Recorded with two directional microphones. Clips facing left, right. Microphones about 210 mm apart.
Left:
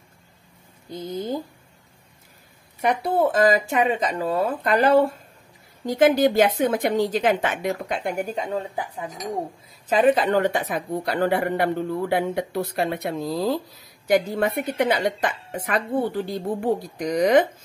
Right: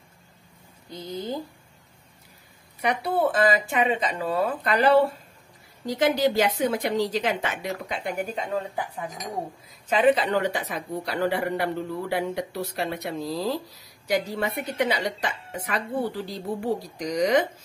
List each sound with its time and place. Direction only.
0.8 s a woman's voice: 50° left (ahead or behind)
2.8 s a woman's voice: 45° left (ahead or behind)
9.8 s a woman's voice: 45° left (ahead or behind)